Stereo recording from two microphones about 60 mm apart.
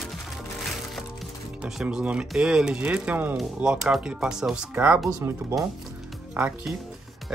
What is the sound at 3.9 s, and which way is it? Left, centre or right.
Speech, centre.